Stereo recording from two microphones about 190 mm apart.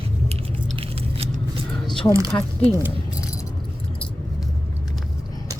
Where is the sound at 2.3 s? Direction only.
15° left (ahead or behind).